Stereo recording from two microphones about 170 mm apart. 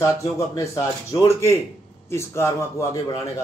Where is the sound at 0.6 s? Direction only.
15° left (ahead or behind).